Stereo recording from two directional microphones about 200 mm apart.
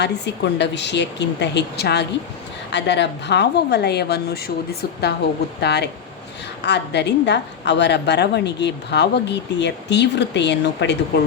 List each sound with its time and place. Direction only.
0.0 s a woman's voice: 60° left (ahead or behind)